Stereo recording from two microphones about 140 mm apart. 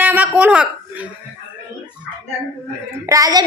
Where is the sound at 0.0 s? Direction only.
10° right (ahead or behind).